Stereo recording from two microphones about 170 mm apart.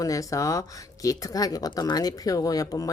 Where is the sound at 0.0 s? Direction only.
20° left (ahead or behind).